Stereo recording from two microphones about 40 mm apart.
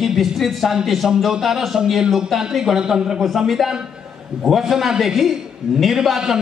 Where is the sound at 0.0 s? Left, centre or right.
Centre.